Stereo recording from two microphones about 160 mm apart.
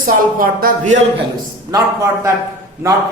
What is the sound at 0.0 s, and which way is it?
Speech, 60° right (ahead or behind).